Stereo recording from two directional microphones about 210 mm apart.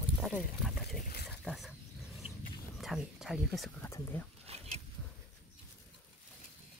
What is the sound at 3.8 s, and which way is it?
Speech, 10° left (ahead or behind).